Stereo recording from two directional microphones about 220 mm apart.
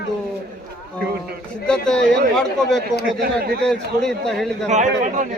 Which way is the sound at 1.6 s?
5° left (ahead or behind).